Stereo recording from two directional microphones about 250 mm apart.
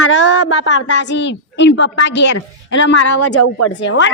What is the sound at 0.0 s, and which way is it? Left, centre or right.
A woman's voice, left.